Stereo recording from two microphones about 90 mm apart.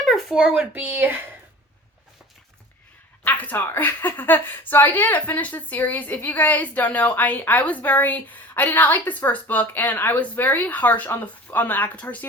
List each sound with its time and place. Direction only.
0.0 s speech: centre (ahead or behind)
0.7 s speech: 20° right (ahead or behind)
3.2 s a woman's voice: 20° left (ahead or behind)